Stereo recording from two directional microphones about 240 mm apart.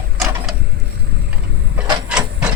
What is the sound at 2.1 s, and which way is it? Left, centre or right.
Printer, centre.